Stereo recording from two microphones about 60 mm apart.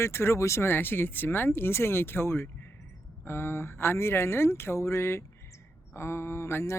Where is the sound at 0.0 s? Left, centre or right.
Left.